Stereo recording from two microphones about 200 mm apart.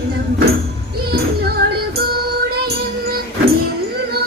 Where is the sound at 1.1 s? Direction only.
50° right (ahead or behind).